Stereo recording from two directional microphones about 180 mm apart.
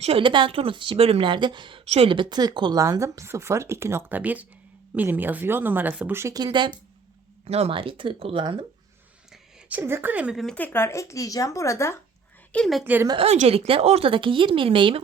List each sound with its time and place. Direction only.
0.0 s a woman's voice: 30° right (ahead or behind)
9.3 s a woman's voice: 10° right (ahead or behind); by 11.9 s 15° left (ahead or behind)
12.5 s a woman's voice: 5° left (ahead or behind)
12.8 s speech: 10° right (ahead or behind)
13.1 s a woman's voice: 35° right (ahead or behind)